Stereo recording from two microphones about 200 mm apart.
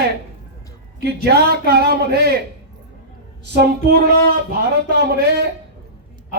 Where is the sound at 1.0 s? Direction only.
50° right (ahead or behind).